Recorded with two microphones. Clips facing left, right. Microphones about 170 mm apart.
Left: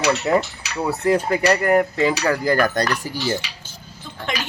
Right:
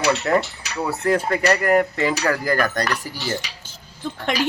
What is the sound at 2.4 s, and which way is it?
Speech, 25° left (ahead or behind).